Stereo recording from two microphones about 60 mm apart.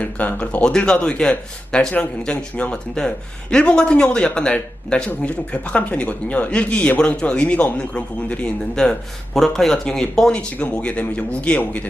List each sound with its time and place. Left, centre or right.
0.0 s speech: left
8.7 s speech: centre